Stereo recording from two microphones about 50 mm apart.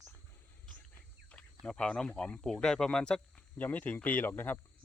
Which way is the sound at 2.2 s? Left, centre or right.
Left.